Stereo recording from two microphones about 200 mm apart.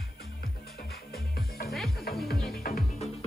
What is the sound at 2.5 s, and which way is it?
Music, 50° left (ahead or behind).